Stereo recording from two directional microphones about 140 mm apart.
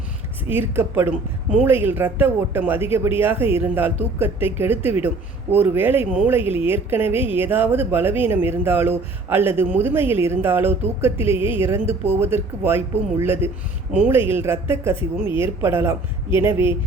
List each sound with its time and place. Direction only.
0.4 s speech: 15° right (ahead or behind)
6.4 s speech: 45° left (ahead or behind)
6.7 s speech: 15° right (ahead or behind)